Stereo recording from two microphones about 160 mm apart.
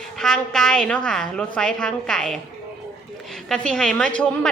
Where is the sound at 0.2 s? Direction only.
5° left (ahead or behind).